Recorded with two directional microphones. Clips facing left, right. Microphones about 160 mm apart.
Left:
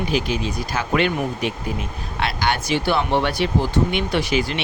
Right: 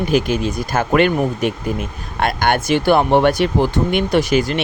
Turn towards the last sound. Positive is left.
turn(degrees=-45)  # may be behind; listen again after turning